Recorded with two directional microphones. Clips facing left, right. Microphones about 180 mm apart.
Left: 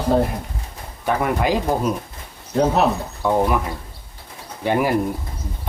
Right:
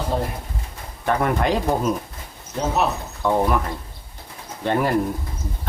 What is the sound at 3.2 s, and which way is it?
Speech, 5° left (ahead or behind).